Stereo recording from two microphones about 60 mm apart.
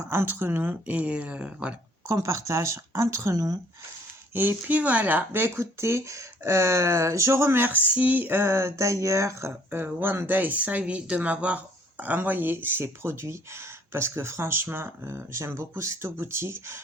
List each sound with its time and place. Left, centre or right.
0.0 s speech: right; by 1.7 s centre
2.1 s speech: right
3.3 s speech: right
4.4 s speech: right
4.8 s speech: right
9.6 s speech: right